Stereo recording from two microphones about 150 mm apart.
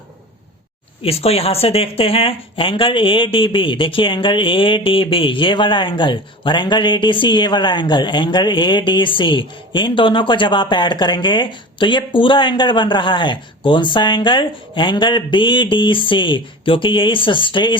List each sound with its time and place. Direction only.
1.0 s speech: 40° left (ahead or behind)